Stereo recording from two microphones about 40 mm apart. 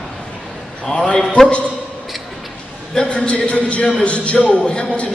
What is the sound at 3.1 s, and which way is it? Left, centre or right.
A man's voice, left.